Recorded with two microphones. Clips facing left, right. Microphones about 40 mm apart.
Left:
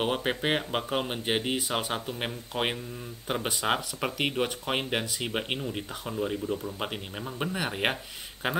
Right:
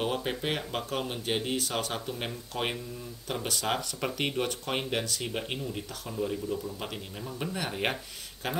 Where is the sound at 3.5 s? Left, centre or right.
Left.